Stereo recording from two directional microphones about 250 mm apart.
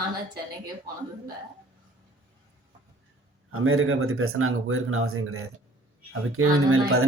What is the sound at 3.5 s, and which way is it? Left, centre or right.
A man's voice, right.